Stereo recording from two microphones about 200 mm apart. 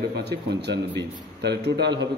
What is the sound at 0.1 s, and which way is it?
A man's voice, 55° right (ahead or behind).